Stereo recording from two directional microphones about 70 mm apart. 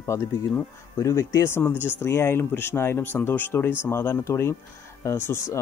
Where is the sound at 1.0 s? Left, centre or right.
Left.